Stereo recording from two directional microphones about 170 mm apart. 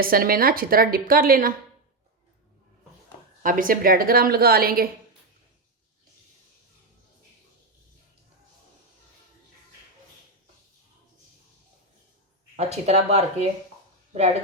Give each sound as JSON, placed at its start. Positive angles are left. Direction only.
{"t": 0.0, "sound": "a woman's voice", "side_deg": -60}
{"t": 3.4, "sound": "a woman's voice", "side_deg": -55}
{"t": 12.5, "sound": "speech", "side_deg": -40}